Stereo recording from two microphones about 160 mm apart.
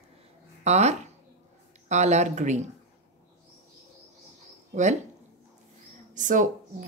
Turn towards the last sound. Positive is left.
turn(degrees=-55)  # may be behind; listen again after turning